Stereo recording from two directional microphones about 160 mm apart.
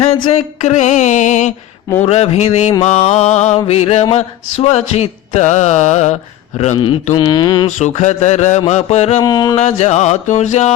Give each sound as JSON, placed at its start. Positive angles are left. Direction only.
{"t": 0.3, "sound": "mantra", "side_deg": 40}
{"t": 2.0, "sound": "speech", "side_deg": 40}
{"t": 2.8, "sound": "mantra", "side_deg": 45}
{"t": 6.6, "sound": "speech", "side_deg": 35}
{"t": 7.2, "sound": "mantra", "side_deg": 30}
{"t": 7.8, "sound": "mantra", "side_deg": 50}
{"t": 9.2, "sound": "mantra", "side_deg": 25}
{"t": 9.6, "sound": "mantra", "side_deg": 45}